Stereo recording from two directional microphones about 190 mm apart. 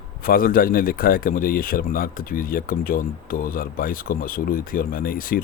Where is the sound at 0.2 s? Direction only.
50° left (ahead or behind).